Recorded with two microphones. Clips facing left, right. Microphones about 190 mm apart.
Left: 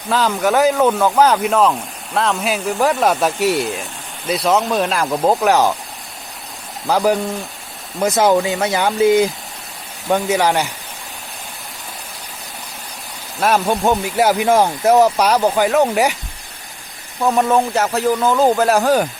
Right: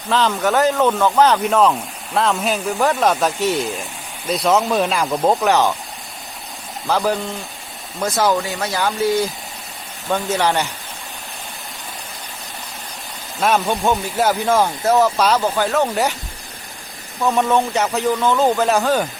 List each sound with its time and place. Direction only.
0.1 s speech: 5° left (ahead or behind)
6.8 s speech: 10° left (ahead or behind)
8.2 s speech: 20° left (ahead or behind)
13.4 s speech: 5° left (ahead or behind)
13.8 s speech: 15° left (ahead or behind)
17.3 s speech: centre (ahead or behind)